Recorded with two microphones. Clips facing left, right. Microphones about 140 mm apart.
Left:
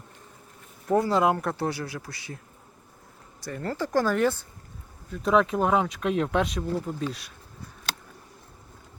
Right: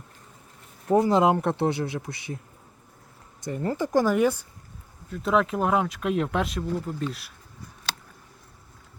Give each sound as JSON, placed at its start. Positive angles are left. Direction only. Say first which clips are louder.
{"t": 0.9, "sound": "speech", "louder": "right 2 dB", "side_deg": -20}
{"t": 3.4, "sound": "speech", "louder": "right 3 dB", "side_deg": -15}
{"t": 5.1, "sound": "speech", "louder": "left 1 dB", "side_deg": 0}